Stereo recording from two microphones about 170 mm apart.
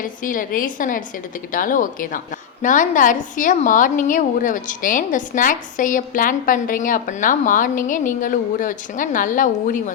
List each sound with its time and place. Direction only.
0.0 s a woman's voice: 50° left (ahead or behind)